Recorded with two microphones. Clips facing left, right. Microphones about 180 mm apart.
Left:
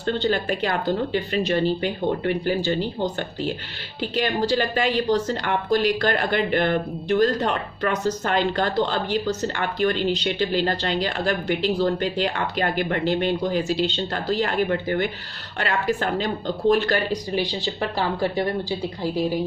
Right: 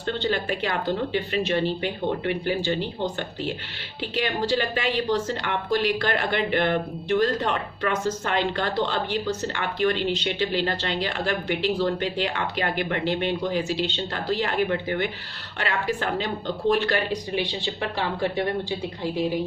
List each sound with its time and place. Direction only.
0.0 s speech: 40° left (ahead or behind)